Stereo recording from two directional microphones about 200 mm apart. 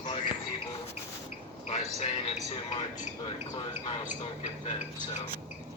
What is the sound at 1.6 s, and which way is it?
A man's voice, 30° left (ahead or behind).